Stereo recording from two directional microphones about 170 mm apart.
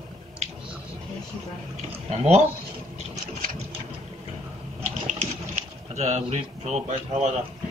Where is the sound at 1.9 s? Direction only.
40° right (ahead or behind).